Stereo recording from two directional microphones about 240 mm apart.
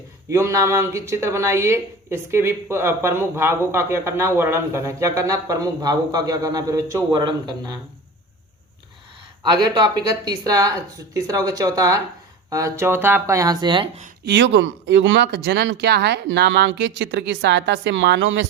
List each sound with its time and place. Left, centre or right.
0.3 s speech: centre
9.5 s speech: centre
14.3 s speech: right